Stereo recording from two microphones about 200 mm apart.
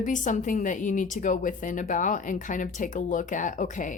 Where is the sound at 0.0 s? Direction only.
40° left (ahead or behind).